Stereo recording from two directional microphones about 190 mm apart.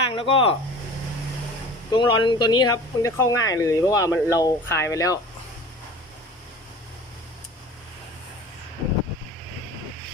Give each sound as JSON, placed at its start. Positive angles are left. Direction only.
{"t": 0.1, "sound": "speech", "side_deg": 30}
{"t": 1.9, "sound": "speech", "side_deg": 25}